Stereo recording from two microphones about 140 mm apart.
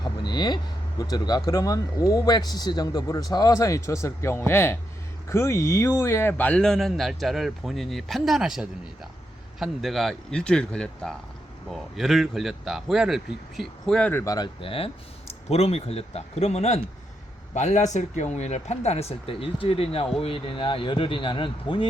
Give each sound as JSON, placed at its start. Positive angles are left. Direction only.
{"t": 0.0, "sound": "speech", "side_deg": 30}
{"t": 14.3, "sound": "speech", "side_deg": 30}